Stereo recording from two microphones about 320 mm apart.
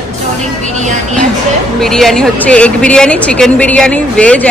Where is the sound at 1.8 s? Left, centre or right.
Centre.